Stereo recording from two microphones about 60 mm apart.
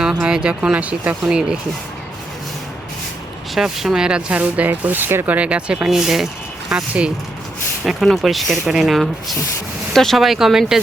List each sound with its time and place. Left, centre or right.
0.0 s speech: centre
1.2 s speech: centre
3.5 s speech: centre
5.9 s speech: centre
7.9 s speech: centre